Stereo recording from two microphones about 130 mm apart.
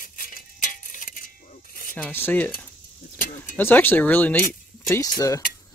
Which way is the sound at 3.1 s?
90° left.